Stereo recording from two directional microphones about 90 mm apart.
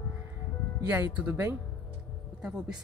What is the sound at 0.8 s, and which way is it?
Speech, 20° right (ahead or behind).